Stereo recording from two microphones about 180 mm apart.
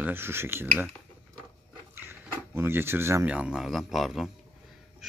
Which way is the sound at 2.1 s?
15° right (ahead or behind).